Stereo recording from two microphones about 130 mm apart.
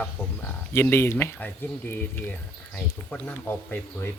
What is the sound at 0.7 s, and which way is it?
Speech, 20° left (ahead or behind).